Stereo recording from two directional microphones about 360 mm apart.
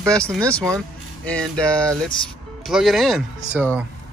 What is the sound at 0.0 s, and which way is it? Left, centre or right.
Speech, centre.